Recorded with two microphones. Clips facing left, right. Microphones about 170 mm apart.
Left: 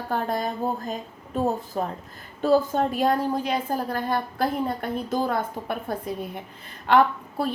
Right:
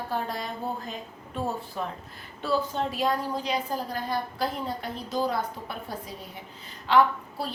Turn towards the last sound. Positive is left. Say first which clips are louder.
# left 4 dB
turn(degrees=55)  # may be behind; listen again after turning